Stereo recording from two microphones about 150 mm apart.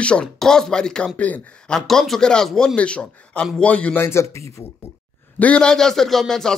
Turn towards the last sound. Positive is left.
turn(degrees=0)  # may be behind; listen again after turning